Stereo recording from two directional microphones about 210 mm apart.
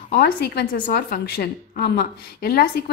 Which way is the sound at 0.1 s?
50° left (ahead or behind).